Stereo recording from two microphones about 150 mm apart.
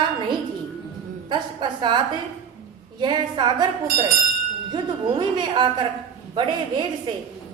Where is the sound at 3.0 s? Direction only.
30° right (ahead or behind).